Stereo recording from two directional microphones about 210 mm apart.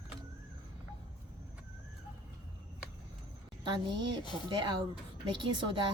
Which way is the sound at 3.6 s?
20° right (ahead or behind).